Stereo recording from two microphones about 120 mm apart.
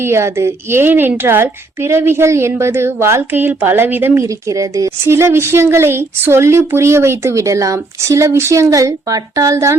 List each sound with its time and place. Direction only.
0.0 s a woman's voice: 20° right (ahead or behind)